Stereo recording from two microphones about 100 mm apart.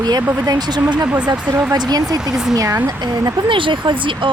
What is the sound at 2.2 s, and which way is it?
Speech, 5° right (ahead or behind).